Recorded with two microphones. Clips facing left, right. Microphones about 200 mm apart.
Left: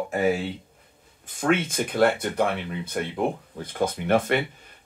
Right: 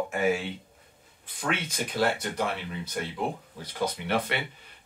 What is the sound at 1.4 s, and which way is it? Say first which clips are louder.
Speech: left 8 dB; 50° left (ahead or behind).